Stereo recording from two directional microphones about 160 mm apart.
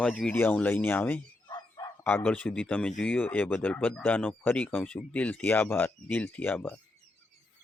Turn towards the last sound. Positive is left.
turn(degrees=10)  # may be behind; listen again after turning